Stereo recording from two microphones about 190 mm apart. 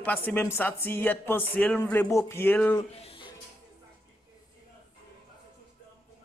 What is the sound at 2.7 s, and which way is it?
Speech, 30° left (ahead or behind).